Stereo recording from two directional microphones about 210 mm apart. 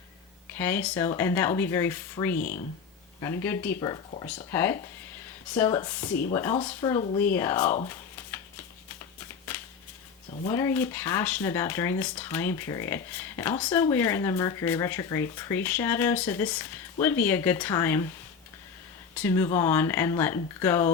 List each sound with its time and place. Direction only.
0.5 s speech: 10° left (ahead or behind)
2.3 s speech: 40° left (ahead or behind)
3.4 s speech: 10° left (ahead or behind)
10.5 s speech: 10° left (ahead or behind)
19.1 s speech: 10° left (ahead or behind)